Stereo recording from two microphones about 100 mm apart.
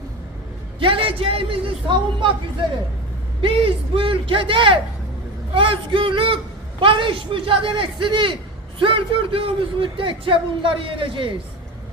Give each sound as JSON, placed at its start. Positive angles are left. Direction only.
{"t": 0.8, "sound": "a man's voice", "side_deg": -60}
{"t": 3.4, "sound": "a man's voice", "side_deg": -65}